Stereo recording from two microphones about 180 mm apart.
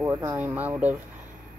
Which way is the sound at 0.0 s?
10° right (ahead or behind).